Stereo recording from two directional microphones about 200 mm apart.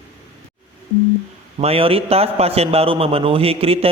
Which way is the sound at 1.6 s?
30° right (ahead or behind).